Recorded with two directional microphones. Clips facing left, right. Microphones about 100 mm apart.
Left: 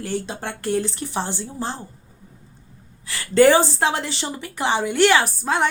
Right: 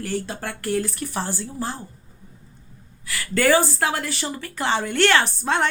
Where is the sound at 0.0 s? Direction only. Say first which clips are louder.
Left 1 dB; 20° left (ahead or behind).